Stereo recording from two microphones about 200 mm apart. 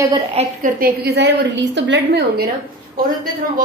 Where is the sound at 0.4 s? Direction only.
45° right (ahead or behind).